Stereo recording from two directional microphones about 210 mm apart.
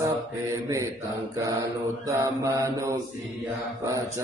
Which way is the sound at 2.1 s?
15° right (ahead or behind).